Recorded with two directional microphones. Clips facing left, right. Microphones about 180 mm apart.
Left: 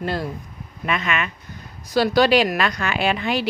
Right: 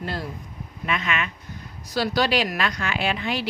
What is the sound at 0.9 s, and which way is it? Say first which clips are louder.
A woman's voice: left 3 dB; 55° left (ahead or behind).